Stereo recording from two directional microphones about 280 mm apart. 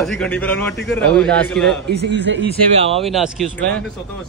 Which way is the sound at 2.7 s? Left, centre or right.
Right.